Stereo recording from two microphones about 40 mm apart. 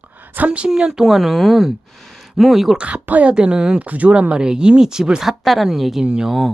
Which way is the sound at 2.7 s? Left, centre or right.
Right.